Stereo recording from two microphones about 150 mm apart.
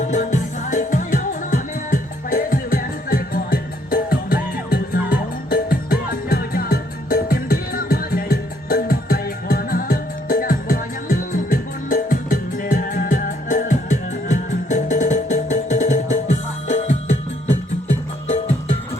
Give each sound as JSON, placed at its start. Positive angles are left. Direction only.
{"t": 0.1, "sound": "music", "side_deg": 55}